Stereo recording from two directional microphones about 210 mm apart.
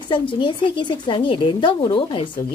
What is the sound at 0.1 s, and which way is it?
Speech, 20° left (ahead or behind).